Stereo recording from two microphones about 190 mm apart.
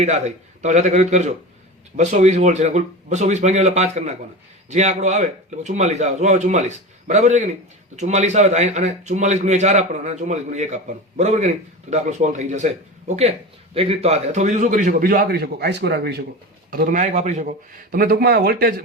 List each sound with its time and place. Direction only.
0.0 s a man's voice: 35° right (ahead or behind); by 16.2 s 60° right (ahead or behind)
16.7 s a man's voice: 45° right (ahead or behind)
17.9 s a man's voice: 55° right (ahead or behind)